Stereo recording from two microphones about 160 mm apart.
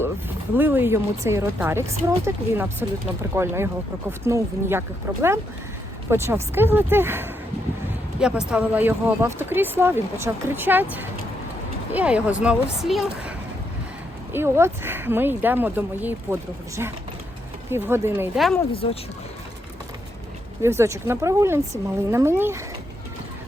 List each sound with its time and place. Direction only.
0.5 s speech: 10° right (ahead or behind)
6.1 s speech: 15° right (ahead or behind)
14.3 s speech: 15° right (ahead or behind)
18.3 s speech: centre (ahead or behind)
18.7 s speech: 35° left (ahead or behind)
20.6 s speech: 15° right (ahead or behind)